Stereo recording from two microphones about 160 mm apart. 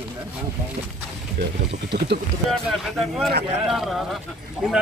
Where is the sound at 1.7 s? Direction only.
90° right.